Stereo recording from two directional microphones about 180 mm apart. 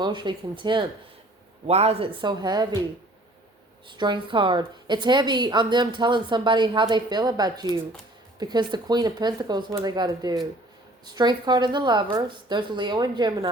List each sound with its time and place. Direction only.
0.0 s a woman's voice: 25° right (ahead or behind)
3.8 s a woman's voice: 25° right (ahead or behind)